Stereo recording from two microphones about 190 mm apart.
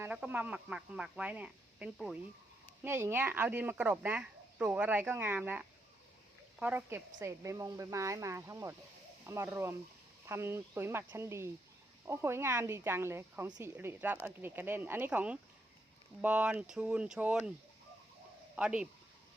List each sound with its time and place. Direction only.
0.0 s speech: 10° right (ahead or behind)
18.5 s speech: 5° right (ahead or behind)